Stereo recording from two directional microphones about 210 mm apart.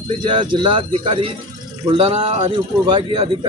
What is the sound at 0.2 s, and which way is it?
Speech, 25° right (ahead or behind).